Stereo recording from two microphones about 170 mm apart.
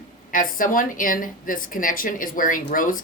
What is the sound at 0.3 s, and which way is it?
A woman's voice, 55° left (ahead or behind).